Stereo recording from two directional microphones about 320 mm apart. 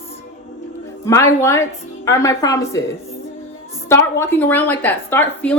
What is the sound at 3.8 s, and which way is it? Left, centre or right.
A woman's voice, centre.